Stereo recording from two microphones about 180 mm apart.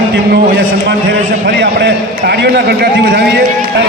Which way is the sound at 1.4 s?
70° right (ahead or behind).